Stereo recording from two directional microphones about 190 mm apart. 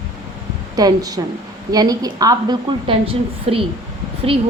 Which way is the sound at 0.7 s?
20° right (ahead or behind).